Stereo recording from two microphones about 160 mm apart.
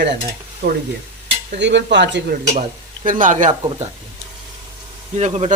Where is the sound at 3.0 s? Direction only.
55° right (ahead or behind).